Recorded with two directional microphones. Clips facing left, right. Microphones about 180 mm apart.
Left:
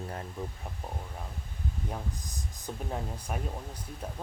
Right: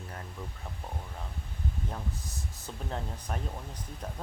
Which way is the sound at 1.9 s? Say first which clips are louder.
Left 1 dB; 15° left (ahead or behind).